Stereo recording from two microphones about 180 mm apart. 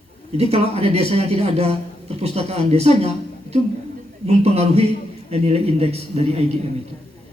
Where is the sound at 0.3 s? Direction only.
35° right (ahead or behind).